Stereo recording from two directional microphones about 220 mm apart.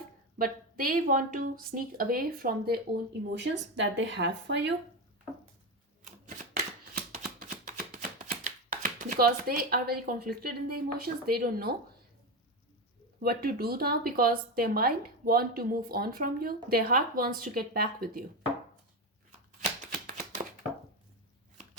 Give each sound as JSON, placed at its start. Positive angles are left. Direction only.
{"t": 0.3, "sound": "speech", "side_deg": -40}
{"t": 6.1, "sound": "typewriter", "side_deg": -35}
{"t": 6.9, "sound": "a sound", "side_deg": -40}
{"t": 10.2, "sound": "a woman's voice", "side_deg": -45}
{"t": 13.2, "sound": "a woman's voice", "side_deg": -45}
{"t": 20.1, "sound": "a sound", "side_deg": -40}